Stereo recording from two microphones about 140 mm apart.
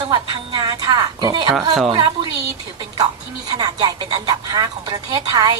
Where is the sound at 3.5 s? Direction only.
30° right (ahead or behind).